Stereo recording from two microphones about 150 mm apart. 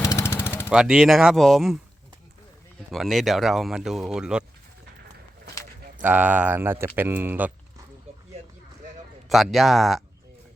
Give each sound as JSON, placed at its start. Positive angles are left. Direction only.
{"t": 0.0, "sound": "a sound", "side_deg": 20}
{"t": 0.7, "sound": "speech", "side_deg": -5}
{"t": 2.9, "sound": "speech", "side_deg": 0}
{"t": 6.0, "sound": "speech", "side_deg": -10}
{"t": 9.3, "sound": "speech", "side_deg": 0}